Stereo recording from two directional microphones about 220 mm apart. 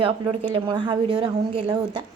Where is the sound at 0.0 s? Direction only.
25° right (ahead or behind).